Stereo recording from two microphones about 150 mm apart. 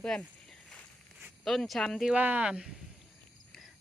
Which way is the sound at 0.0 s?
5° left (ahead or behind).